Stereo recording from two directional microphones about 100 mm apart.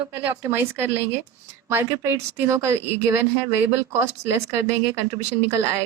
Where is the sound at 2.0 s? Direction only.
20° right (ahead or behind).